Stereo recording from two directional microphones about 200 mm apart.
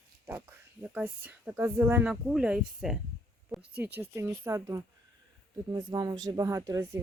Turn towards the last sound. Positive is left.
turn(degrees=-15)  # may be behind; listen again after turning